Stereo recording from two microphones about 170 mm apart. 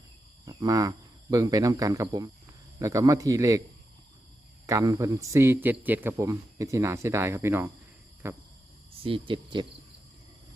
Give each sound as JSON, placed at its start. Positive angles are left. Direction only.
{"t": 0.4, "sound": "a man's voice", "side_deg": -20}
{"t": 4.6, "sound": "a man's voice", "side_deg": -20}
{"t": 9.0, "sound": "speech", "side_deg": -30}